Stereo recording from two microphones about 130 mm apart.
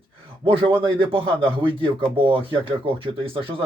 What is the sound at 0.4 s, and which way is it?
Speech, 45° right (ahead or behind).